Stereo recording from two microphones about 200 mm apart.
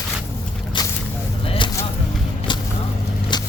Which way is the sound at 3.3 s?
20° left (ahead or behind).